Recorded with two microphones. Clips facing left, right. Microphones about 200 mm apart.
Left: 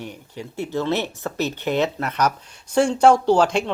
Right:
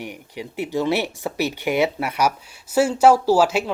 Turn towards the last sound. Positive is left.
turn(degrees=-5)  # may be behind; listen again after turning